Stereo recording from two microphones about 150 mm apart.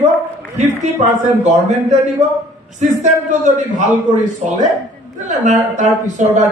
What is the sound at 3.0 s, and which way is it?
Speech, 55° right (ahead or behind).